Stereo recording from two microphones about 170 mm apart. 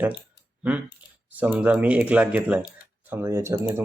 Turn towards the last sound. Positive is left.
turn(degrees=-15)  # may be behind; listen again after turning